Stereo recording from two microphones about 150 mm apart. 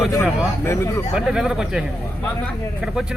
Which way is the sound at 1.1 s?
5° right (ahead or behind).